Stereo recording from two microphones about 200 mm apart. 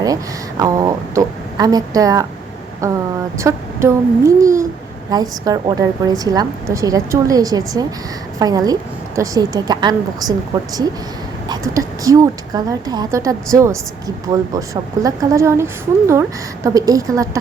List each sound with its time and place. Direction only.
0.0 s a woman's voice: 20° right (ahead or behind)